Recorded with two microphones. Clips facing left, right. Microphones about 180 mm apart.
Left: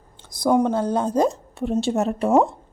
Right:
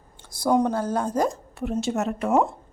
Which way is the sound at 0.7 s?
20° left (ahead or behind).